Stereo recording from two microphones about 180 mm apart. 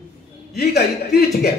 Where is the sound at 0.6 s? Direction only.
65° left (ahead or behind).